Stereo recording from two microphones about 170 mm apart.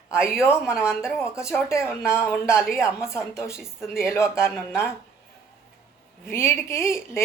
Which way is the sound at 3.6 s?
5° right (ahead or behind).